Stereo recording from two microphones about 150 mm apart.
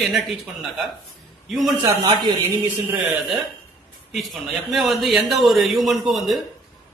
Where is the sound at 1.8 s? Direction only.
25° right (ahead or behind).